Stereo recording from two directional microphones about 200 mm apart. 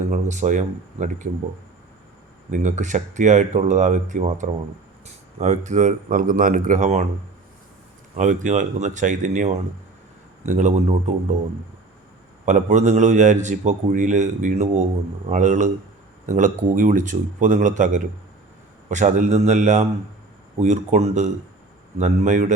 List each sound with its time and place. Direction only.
0.1 s a man's voice: 35° right (ahead or behind)
2.5 s a man's voice: 35° right (ahead or behind)
8.1 s a man's voice: 35° right (ahead or behind)
12.5 s a man's voice: 35° right (ahead or behind)